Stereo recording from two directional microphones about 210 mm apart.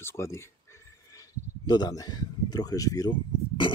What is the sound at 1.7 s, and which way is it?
Speech, 20° left (ahead or behind).